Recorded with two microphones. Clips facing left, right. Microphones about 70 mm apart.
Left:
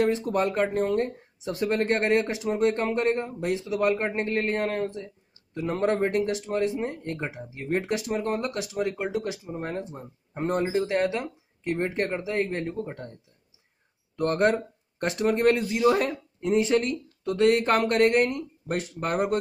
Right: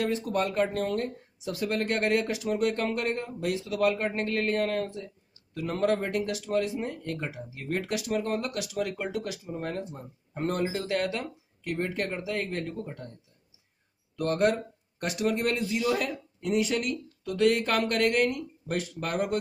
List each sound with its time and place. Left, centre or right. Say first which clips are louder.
0.0 s speech: left 4 dB; left
14.1 s speech: left 2 dB; left